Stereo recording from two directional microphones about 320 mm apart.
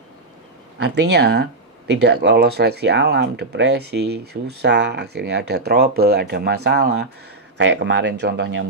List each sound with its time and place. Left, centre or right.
1.1 s speech: right